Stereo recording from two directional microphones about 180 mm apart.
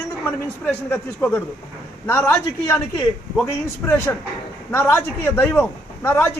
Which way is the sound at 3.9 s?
15° left (ahead or behind).